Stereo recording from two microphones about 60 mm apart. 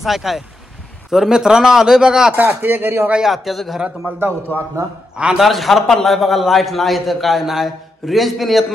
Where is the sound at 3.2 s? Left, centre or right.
Centre.